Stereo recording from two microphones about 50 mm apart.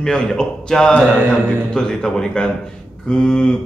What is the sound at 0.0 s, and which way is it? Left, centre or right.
A man's voice, centre.